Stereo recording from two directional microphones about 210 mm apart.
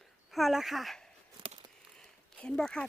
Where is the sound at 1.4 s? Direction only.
25° right (ahead or behind).